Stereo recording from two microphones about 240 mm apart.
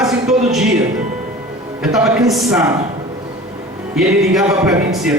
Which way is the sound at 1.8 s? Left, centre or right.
Centre.